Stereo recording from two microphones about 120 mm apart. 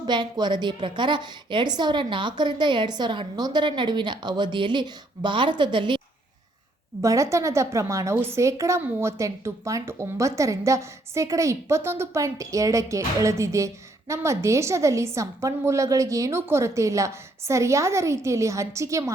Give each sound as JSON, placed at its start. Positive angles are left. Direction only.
{"t": 0.0, "sound": "a woman's voice", "side_deg": -40}
{"t": 7.0, "sound": "a woman's voice", "side_deg": -25}